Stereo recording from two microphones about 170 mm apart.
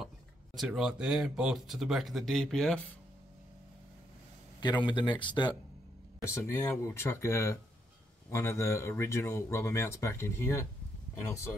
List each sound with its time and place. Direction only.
0.6 s speech: centre (ahead or behind)
4.6 s speech: 25° left (ahead or behind)